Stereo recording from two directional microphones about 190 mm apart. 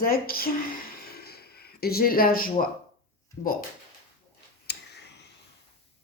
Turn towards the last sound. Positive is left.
turn(degrees=60)  # may be behind; listen again after turning